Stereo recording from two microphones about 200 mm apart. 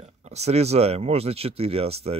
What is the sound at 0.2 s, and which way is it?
Speech, 35° right (ahead or behind).